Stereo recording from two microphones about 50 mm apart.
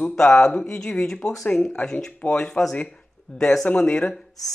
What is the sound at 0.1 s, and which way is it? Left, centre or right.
Speech, centre.